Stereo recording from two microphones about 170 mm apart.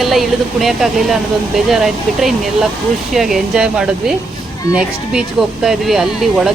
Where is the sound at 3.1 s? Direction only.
Centre (ahead or behind).